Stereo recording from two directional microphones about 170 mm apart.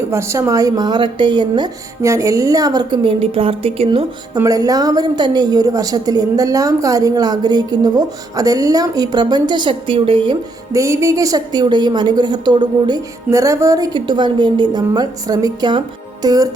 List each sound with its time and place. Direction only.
0.1 s a woman's voice: 15° right (ahead or behind); by 4.0 s 35° right (ahead or behind)
4.4 s a woman's voice: 20° right (ahead or behind)
10.7 s a woman's voice: 20° right (ahead or behind)